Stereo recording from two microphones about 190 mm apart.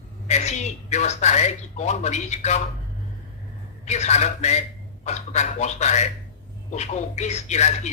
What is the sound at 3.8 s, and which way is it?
Speech, 35° left (ahead or behind).